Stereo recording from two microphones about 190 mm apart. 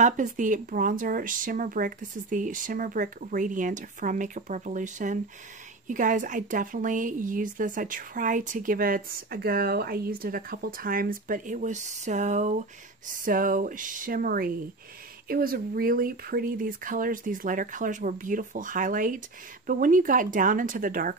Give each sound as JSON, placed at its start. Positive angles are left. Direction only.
{"t": 0.0, "sound": "speech", "side_deg": -40}